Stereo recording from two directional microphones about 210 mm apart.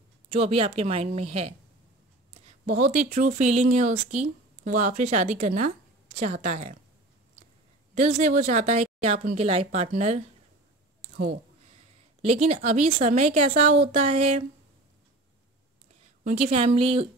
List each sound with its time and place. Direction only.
0.3 s speech: 30° right (ahead or behind)
2.6 s speech: 35° right (ahead or behind)
7.9 s speech: 35° right (ahead or behind)
12.2 s speech: 30° right (ahead or behind)
16.3 s speech: 30° right (ahead or behind)